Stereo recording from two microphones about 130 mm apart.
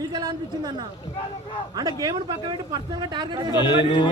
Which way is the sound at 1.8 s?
30° right (ahead or behind).